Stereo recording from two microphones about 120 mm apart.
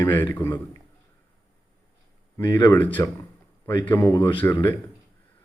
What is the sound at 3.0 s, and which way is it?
Speech, 25° left (ahead or behind).